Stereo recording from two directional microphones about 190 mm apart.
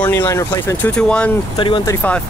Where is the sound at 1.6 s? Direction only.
25° left (ahead or behind).